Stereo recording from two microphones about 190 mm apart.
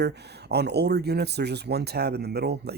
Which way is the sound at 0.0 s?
60° right (ahead or behind).